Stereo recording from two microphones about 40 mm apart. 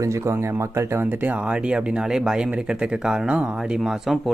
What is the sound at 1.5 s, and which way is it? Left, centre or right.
Speech, right.